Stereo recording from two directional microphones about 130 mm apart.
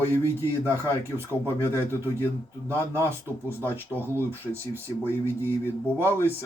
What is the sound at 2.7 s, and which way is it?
A man's voice, 15° left (ahead or behind).